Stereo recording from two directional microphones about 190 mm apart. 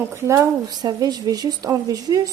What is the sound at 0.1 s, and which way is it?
Speech, 15° right (ahead or behind).